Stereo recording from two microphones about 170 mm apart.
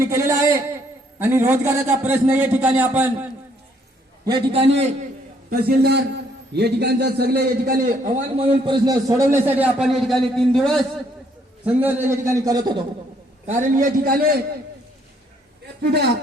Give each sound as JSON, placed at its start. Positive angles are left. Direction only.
{"t": 0.0, "sound": "a sound", "side_deg": -15}
{"t": 1.2, "sound": "a man's voice", "side_deg": -15}
{"t": 4.3, "sound": "a man's voice", "side_deg": -35}
{"t": 5.5, "sound": "a man's voice", "side_deg": -70}
{"t": 8.4, "sound": "a man's voice", "side_deg": -35}
{"t": 11.6, "sound": "a man's voice", "side_deg": -10}
{"t": 13.5, "sound": "a man's voice", "side_deg": -45}
{"t": 15.8, "sound": "a man's voice", "side_deg": -75}